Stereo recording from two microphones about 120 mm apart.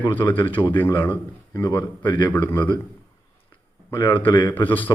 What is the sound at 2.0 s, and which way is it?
Speech, 40° left (ahead or behind).